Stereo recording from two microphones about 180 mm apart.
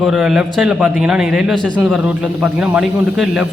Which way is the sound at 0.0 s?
5° right (ahead or behind).